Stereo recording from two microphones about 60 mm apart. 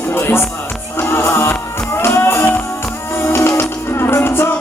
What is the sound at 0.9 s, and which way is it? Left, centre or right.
Music, left.